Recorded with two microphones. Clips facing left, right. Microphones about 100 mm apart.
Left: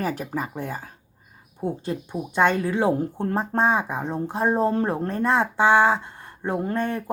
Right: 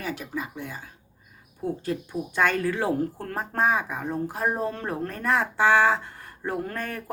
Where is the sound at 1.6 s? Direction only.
25° left (ahead or behind).